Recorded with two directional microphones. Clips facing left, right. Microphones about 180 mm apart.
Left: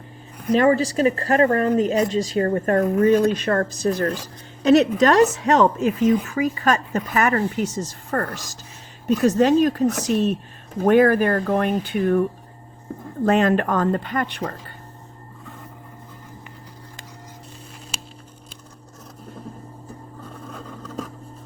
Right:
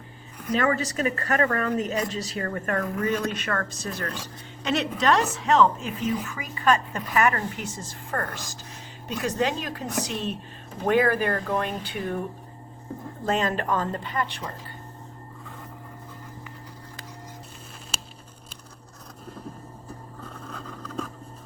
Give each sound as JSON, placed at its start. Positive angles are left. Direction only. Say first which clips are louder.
{"t": 0.5, "sound": "speech", "louder": "left 7 dB", "side_deg": 30}
{"t": 13.2, "sound": "speech", "louder": "left 8 dB", "side_deg": 60}